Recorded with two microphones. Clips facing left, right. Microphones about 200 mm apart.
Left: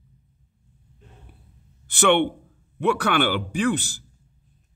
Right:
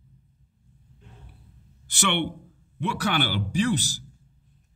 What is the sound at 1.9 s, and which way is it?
A man's voice, 50° left (ahead or behind).